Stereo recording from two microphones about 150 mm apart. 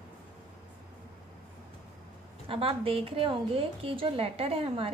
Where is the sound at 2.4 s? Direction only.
40° right (ahead or behind).